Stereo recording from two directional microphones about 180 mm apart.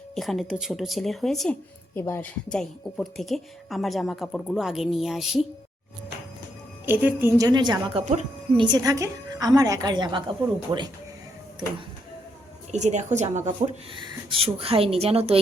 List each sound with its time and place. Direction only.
0.2 s speech: centre (ahead or behind)
2.0 s speech: 10° left (ahead or behind)
6.8 s a woman's voice: 10° right (ahead or behind)
7.9 s speech: 40° right (ahead or behind)
8.5 s a woman's voice: 25° right (ahead or behind)
12.7 s speech: 40° right (ahead or behind)
13.9 s speech: 30° right (ahead or behind)